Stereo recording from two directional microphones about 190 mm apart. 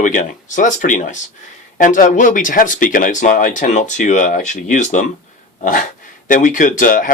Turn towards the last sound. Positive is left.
turn(degrees=45)  # may be behind; listen again after turning